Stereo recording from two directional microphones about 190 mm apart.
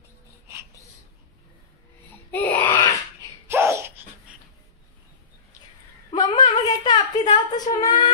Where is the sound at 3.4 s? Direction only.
15° right (ahead or behind).